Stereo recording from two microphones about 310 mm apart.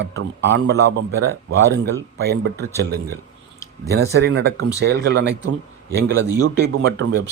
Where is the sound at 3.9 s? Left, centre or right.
Right.